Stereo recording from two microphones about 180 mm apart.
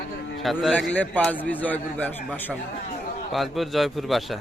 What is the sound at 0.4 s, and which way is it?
A man's voice, centre (ahead or behind).